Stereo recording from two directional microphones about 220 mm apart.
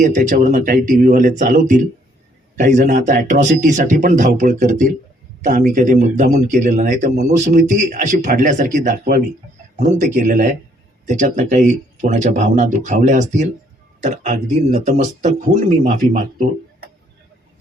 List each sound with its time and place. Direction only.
0.0 s a man's voice: 35° right (ahead or behind)